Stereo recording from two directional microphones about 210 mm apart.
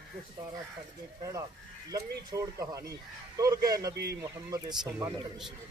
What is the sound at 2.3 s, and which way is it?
Speech, 15° right (ahead or behind).